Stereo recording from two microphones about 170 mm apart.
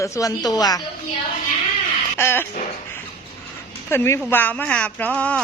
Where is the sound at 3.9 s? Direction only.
15° left (ahead or behind).